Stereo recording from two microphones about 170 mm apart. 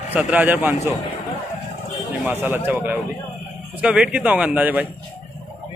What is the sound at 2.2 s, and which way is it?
Speech, 10° right (ahead or behind).